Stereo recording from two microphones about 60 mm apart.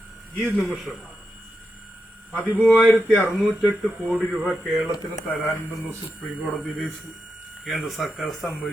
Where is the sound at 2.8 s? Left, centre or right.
Centre.